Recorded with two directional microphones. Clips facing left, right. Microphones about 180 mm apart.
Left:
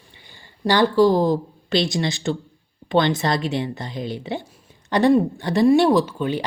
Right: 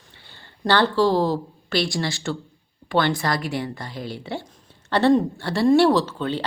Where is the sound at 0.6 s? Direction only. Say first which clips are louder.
Left 3 dB; 15° left (ahead or behind).